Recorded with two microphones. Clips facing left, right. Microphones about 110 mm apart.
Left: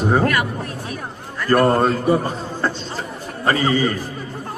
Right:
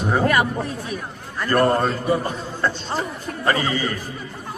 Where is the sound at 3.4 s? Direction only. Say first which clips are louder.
Left 4 dB; 35° left (ahead or behind).